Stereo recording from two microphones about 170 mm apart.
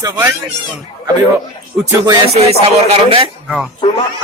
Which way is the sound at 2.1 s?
35° right (ahead or behind).